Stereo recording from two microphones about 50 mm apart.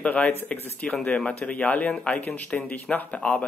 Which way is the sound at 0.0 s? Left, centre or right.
Left.